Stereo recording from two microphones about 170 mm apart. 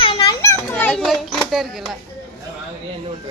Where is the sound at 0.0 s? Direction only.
30° left (ahead or behind).